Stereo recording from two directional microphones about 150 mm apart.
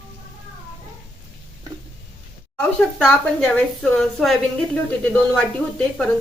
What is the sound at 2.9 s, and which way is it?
A woman's voice, 5° left (ahead or behind).